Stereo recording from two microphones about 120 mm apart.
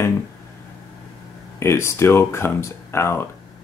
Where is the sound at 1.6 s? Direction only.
20° left (ahead or behind).